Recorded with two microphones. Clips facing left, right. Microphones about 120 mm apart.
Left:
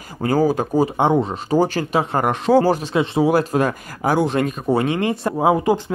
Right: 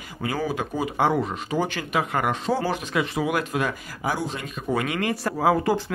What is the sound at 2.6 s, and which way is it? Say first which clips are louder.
Speech: left 8 dB; 40° left (ahead or behind).